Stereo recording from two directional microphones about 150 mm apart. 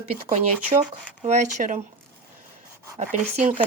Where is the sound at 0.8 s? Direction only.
50° right (ahead or behind).